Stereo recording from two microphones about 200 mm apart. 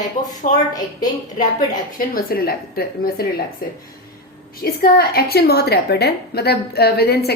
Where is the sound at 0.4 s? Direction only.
40° left (ahead or behind).